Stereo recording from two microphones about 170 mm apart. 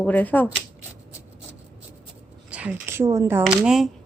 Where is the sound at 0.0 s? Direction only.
10° left (ahead or behind).